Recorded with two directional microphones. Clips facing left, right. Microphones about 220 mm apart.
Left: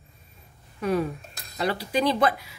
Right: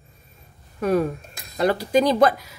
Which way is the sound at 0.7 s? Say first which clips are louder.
Right 4 dB; 45° right (ahead or behind).